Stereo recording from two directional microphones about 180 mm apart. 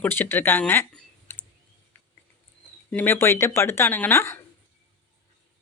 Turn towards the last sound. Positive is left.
turn(degrees=15)  # may be behind; listen again after turning